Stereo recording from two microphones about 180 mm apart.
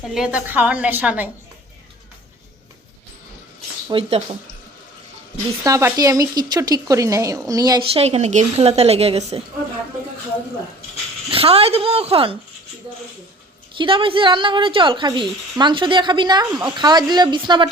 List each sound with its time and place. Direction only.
0.1 s a woman's voice: 5° right (ahead or behind)
3.8 s a woman's voice: 30° right (ahead or behind)
5.6 s speech: 20° right (ahead or behind); by 9.4 s 35° right (ahead or behind)
11.3 s a woman's voice: 30° right (ahead or behind)
13.7 s speech: 30° right (ahead or behind)